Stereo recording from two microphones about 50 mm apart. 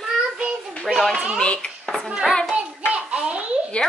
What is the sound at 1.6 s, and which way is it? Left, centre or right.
Speech, centre.